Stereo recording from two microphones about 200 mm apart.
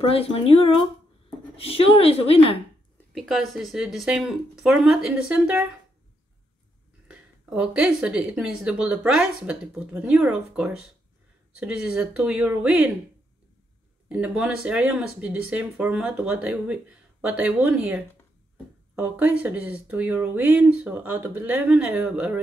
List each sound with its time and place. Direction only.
0.1 s a woman's voice: 30° left (ahead or behind)
3.1 s speech: centre (ahead or behind)
7.1 s speech: 5° right (ahead or behind)
14.0 s speech: 5° right (ahead or behind)